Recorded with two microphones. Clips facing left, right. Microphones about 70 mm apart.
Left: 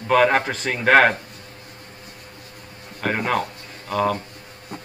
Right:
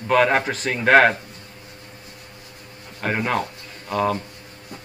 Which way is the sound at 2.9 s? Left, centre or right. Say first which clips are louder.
Left 1 dB; centre.